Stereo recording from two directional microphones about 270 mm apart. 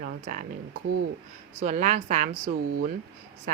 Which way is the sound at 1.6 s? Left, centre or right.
Right.